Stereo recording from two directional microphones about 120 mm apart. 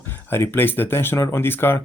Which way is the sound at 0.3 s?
20° left (ahead or behind).